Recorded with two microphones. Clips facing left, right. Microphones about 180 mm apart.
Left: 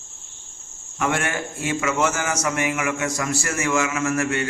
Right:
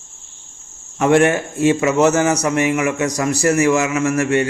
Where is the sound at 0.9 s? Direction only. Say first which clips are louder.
Right 11 dB; 20° right (ahead or behind).